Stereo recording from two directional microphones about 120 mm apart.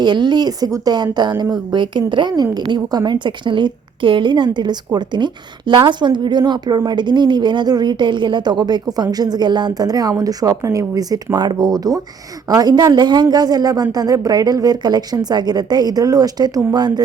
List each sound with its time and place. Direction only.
0.0 s a woman's voice: 40° right (ahead or behind)